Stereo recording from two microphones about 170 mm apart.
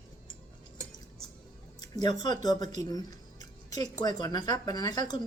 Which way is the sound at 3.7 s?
20° left (ahead or behind).